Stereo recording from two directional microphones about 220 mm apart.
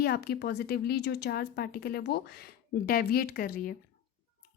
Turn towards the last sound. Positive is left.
turn(degrees=40)  # may be behind; listen again after turning